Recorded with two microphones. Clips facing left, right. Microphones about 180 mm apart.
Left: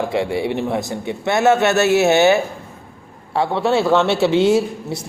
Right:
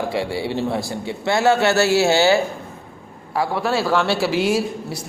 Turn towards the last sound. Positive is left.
turn(degrees=25)  # may be behind; listen again after turning